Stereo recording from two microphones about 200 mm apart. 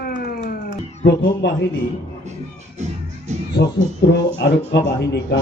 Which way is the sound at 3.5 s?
60° left (ahead or behind).